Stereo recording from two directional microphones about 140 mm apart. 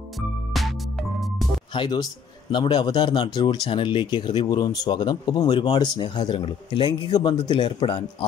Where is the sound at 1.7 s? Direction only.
35° left (ahead or behind).